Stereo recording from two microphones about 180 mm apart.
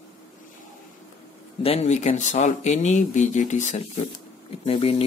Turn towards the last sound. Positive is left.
turn(degrees=30)  # may be behind; listen again after turning